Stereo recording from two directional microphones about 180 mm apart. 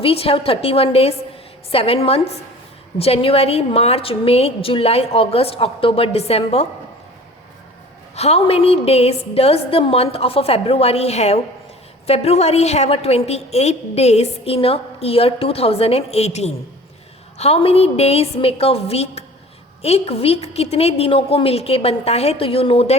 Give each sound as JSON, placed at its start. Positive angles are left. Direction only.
{"t": 0.0, "sound": "a woman's voice", "side_deg": 30}
{"t": 8.1, "sound": "a woman's voice", "side_deg": 35}